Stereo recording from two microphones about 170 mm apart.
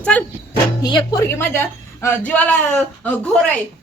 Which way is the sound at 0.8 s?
25° left (ahead or behind).